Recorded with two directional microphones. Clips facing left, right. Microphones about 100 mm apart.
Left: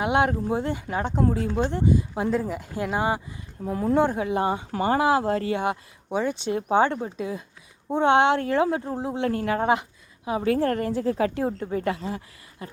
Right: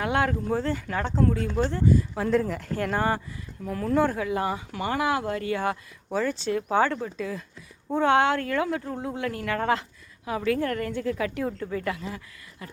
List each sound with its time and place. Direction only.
0.0 s a woman's voice: 20° left (ahead or behind)
3.6 s a woman's voice: 25° left (ahead or behind)
5.5 s a woman's voice: 20° left (ahead or behind)